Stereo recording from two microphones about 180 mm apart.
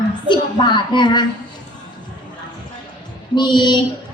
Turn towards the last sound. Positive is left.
turn(degrees=25)  # may be behind; listen again after turning